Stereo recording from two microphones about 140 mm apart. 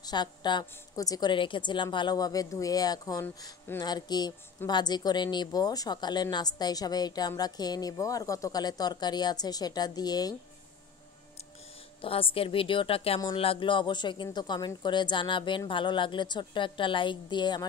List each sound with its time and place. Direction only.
0.0 s a woman's voice: 30° left (ahead or behind)
12.0 s speech: 40° left (ahead or behind)